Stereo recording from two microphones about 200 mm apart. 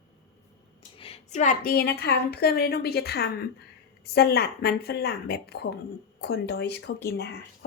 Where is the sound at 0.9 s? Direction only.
30° left (ahead or behind).